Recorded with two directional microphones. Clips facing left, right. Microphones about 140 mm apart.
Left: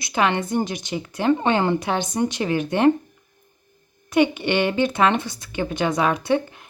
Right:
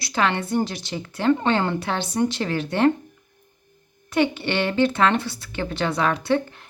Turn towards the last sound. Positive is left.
turn(degrees=15)  # may be behind; listen again after turning